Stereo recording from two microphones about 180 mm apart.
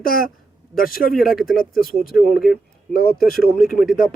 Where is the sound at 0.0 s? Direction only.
55° left (ahead or behind).